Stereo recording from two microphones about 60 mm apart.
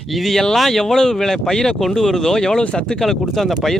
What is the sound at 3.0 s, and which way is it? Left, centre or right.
Speech, centre.